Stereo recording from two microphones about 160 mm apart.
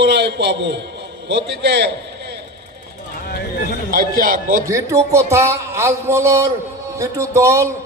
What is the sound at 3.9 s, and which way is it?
Speech, 65° right (ahead or behind).